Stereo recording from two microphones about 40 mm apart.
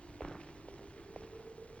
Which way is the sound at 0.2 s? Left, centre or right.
Left.